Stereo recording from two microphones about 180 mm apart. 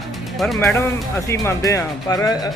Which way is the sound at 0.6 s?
15° left (ahead or behind).